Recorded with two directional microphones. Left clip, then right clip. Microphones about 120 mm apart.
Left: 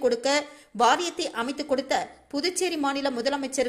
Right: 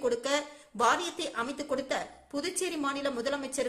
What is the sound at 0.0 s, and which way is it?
A woman's voice, 25° left (ahead or behind).